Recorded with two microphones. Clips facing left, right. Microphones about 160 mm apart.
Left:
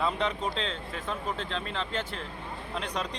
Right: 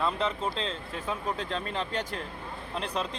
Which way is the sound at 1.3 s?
40° right (ahead or behind).